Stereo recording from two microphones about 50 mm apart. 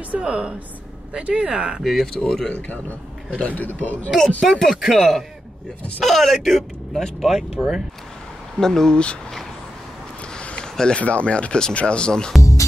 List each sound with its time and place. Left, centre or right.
0.2 s speech: right
1.8 s speech: centre
2.1 s speech: centre
3.3 s a man's voice: left
4.5 s speech: centre
8.5 s speech: centre
10.3 s a sound: centre
11.0 s speech: left
12.4 s music: left